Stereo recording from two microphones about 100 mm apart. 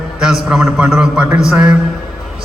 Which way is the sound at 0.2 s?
5° right (ahead or behind).